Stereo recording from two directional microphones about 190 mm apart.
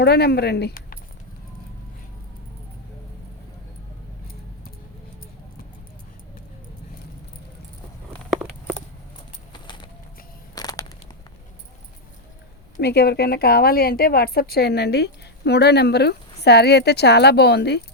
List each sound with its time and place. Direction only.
0.0 s a woman's voice: 60° left (ahead or behind)
9.5 s bird: 25° left (ahead or behind)
10.5 s crushing: 20° left (ahead or behind)
12.7 s a woman's voice: 60° left (ahead or behind)